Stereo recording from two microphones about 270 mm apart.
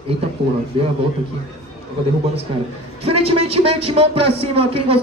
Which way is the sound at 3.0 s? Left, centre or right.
Right.